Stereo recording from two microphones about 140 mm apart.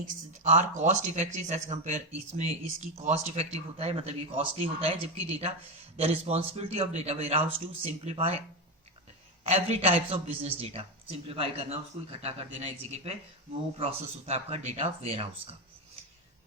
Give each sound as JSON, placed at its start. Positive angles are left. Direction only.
{"t": 0.0, "sound": "speech", "side_deg": -60}
{"t": 9.4, "sound": "speech", "side_deg": -50}